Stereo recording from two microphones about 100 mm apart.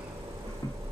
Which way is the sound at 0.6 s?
40° left (ahead or behind).